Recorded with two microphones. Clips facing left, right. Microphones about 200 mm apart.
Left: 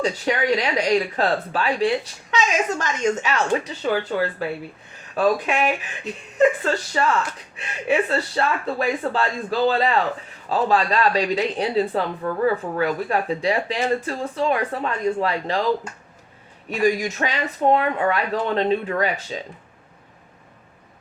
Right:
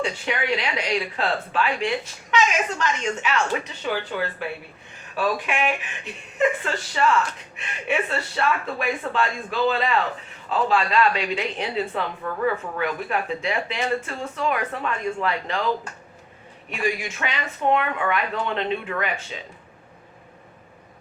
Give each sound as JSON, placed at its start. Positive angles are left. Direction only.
{"t": 0.0, "sound": "a woman's voice", "side_deg": 40}
{"t": 5.1, "sound": "speech", "side_deg": 35}
{"t": 16.6, "sound": "speech", "side_deg": 40}